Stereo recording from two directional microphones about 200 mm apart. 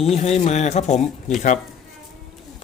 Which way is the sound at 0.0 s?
30° left (ahead or behind).